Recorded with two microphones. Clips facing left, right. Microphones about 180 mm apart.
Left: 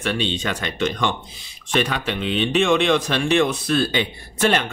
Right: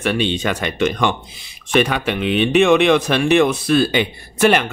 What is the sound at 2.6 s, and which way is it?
Speech, 65° right (ahead or behind).